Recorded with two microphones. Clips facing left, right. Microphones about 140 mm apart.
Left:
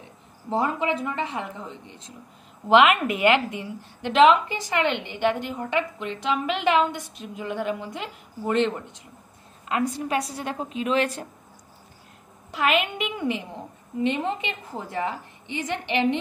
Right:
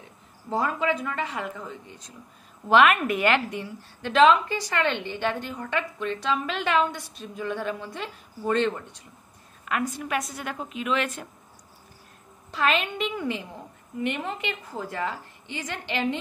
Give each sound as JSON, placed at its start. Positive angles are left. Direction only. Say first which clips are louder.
{"t": 0.5, "sound": "a woman's voice", "louder": "left 1 dB", "side_deg": 20}
{"t": 12.4, "sound": "a woman's voice", "louder": "left 2 dB", "side_deg": 15}